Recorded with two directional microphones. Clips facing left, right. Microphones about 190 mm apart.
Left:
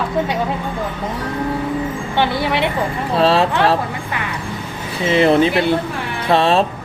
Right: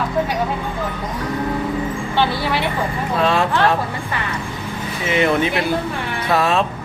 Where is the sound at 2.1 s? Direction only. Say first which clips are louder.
Left 2 dB; 20° left (ahead or behind).